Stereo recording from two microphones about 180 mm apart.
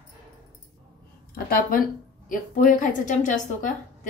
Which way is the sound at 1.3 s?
55° left (ahead or behind).